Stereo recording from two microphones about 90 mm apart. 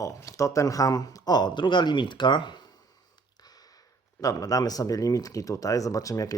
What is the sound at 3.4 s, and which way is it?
Speech, 45° left (ahead or behind).